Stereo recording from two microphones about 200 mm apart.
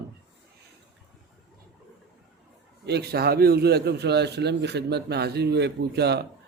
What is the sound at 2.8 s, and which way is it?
Speech, 55° right (ahead or behind).